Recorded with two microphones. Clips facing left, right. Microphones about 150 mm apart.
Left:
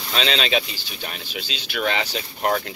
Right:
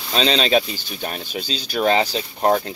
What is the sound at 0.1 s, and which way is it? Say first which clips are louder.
Speech: right 5 dB; 35° right (ahead or behind).